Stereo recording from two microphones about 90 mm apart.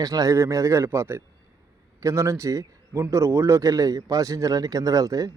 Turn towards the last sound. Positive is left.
turn(degrees=-40)  # may be behind; listen again after turning